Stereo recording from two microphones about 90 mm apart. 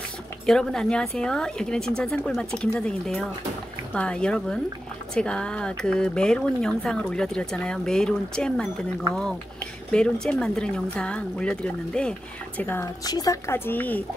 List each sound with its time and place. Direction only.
0.5 s speech: 5° left (ahead or behind)
9.8 s speech: 10° left (ahead or behind)
12.8 s speech: 45° left (ahead or behind)
13.5 s speech: 20° left (ahead or behind)